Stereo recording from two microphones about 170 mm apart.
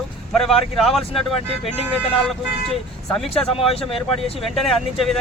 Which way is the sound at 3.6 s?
35° left (ahead or behind).